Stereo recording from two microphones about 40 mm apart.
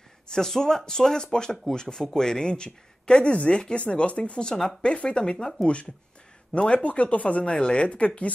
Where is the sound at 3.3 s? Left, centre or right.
Left.